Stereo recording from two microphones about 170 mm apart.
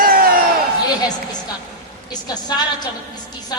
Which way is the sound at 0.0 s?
55° right (ahead or behind).